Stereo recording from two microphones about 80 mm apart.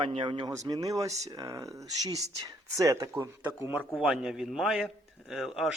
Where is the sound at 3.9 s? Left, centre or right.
Centre.